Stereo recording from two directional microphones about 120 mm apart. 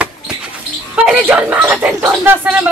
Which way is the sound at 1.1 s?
10° right (ahead or behind).